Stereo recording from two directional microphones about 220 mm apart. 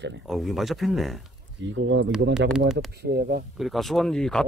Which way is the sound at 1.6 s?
55° right (ahead or behind).